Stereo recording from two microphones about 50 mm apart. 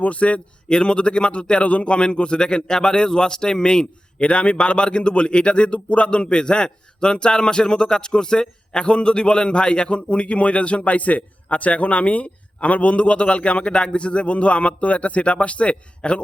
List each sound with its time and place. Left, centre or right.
0.0 s a man's voice: left